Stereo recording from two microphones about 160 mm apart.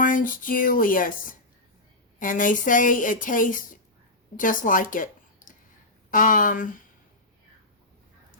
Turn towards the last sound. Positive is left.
turn(degrees=55)  # may be behind; listen again after turning